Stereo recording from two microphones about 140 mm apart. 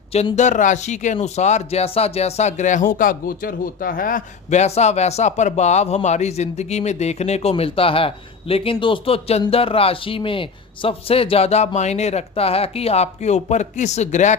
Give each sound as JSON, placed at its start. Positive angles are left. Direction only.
{"t": 0.1, "sound": "speech", "side_deg": 50}